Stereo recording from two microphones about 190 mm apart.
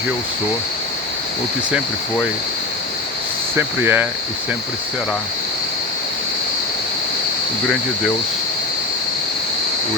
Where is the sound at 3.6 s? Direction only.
10° right (ahead or behind).